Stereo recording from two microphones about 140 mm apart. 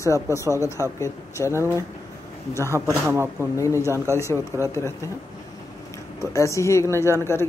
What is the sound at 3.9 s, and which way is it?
Speech, 20° right (ahead or behind).